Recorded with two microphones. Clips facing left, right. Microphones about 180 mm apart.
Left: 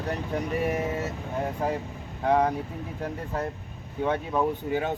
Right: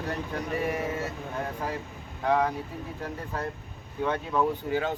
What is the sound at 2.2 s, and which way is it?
Speech, 20° left (ahead or behind).